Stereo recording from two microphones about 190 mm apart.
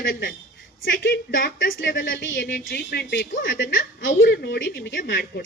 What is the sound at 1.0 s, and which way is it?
Speech, 50° left (ahead or behind).